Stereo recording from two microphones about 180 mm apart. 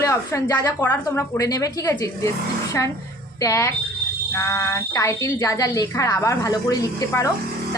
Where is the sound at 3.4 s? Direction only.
15° left (ahead or behind).